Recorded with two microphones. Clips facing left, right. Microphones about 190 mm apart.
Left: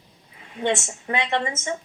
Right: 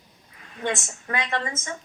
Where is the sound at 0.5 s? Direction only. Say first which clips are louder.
Left 4 dB; 25° left (ahead or behind).